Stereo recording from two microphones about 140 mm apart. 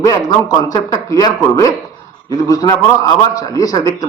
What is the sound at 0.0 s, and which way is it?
Speech, 25° left (ahead or behind).